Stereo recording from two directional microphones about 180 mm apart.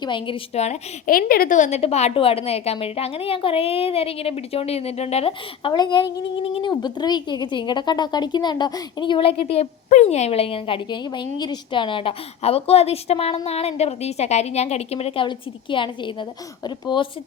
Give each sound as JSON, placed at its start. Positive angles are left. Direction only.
{"t": 0.0, "sound": "a woman's voice", "side_deg": 25}